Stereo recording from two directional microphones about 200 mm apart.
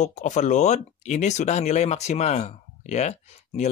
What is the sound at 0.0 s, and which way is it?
Speech, 35° left (ahead or behind).